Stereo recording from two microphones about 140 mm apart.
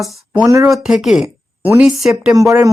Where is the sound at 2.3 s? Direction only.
25° right (ahead or behind).